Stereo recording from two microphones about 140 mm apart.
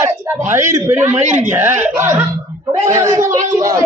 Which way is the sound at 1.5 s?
15° right (ahead or behind).